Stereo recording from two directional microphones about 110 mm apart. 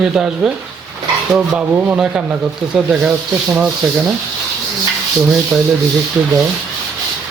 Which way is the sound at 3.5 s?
10° right (ahead or behind).